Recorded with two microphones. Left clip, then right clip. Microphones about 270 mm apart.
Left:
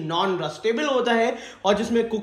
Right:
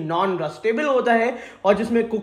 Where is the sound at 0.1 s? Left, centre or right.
Centre.